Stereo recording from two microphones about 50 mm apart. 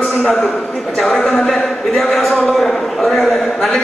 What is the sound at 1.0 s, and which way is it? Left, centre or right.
A man's voice, centre.